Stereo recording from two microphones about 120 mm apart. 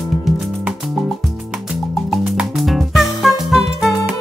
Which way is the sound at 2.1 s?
Centre (ahead or behind).